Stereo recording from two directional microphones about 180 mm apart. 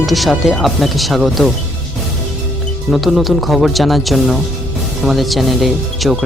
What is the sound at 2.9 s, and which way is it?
Speech, centre (ahead or behind).